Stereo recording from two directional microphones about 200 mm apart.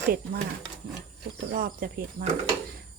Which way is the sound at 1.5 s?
45° right (ahead or behind).